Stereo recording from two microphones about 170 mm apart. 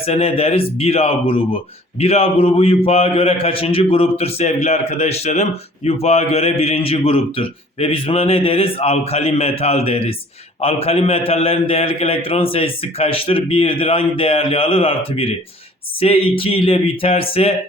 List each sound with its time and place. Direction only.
0.0 s a man's voice: 35° left (ahead or behind)